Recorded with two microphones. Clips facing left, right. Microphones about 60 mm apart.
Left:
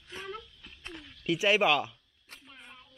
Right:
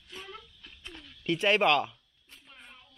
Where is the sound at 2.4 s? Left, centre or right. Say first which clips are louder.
Even; centre.